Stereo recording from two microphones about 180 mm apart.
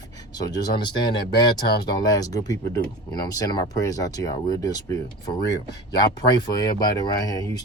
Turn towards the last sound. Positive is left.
turn(degrees=20)  # may be behind; listen again after turning